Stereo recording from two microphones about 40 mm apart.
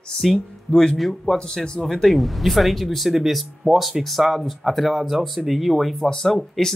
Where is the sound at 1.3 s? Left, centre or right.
Left.